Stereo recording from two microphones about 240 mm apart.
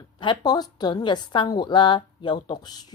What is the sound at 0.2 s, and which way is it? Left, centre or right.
A woman's voice, centre.